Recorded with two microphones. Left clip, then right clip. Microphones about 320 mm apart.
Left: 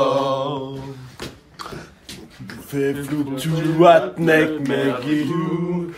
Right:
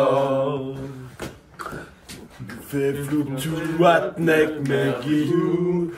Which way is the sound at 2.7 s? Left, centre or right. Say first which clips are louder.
Left 1 dB; left.